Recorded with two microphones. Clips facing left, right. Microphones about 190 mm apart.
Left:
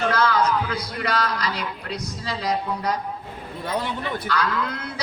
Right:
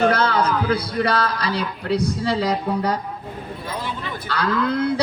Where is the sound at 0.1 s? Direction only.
55° right (ahead or behind).